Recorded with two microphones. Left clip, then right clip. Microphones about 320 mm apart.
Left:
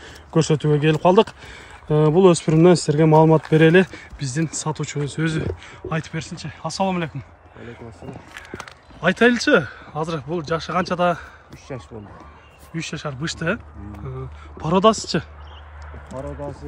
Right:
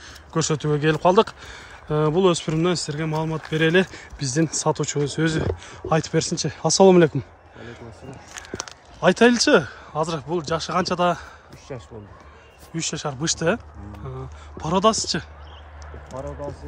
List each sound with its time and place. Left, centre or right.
0.0 s speech: centre